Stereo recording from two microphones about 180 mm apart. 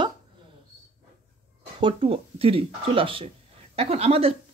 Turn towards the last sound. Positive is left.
turn(degrees=-35)  # may be behind; listen again after turning